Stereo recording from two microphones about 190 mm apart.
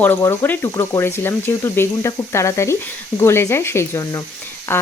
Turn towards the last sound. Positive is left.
turn(degrees=10)  # may be behind; listen again after turning